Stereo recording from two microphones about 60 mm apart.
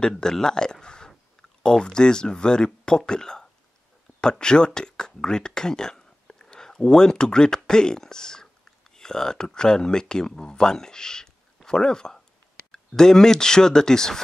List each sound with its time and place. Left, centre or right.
0.0 s speech: centre